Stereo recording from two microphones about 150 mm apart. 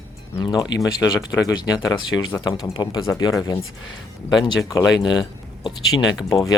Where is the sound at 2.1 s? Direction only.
10° left (ahead or behind).